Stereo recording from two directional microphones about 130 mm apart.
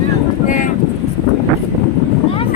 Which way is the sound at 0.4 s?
90° left.